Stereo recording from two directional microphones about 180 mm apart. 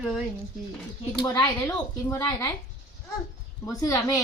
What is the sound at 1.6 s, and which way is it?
Speech, 5° left (ahead or behind).